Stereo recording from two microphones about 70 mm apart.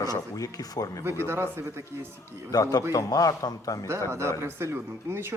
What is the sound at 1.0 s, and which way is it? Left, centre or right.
Speech, right.